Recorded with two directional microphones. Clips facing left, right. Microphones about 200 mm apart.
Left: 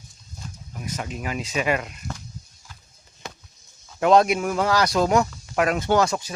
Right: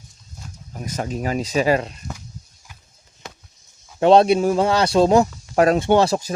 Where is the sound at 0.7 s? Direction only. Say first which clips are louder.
Right 5 dB; 40° right (ahead or behind).